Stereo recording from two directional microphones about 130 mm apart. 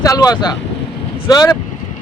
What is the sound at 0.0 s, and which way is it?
Speech, 25° left (ahead or behind).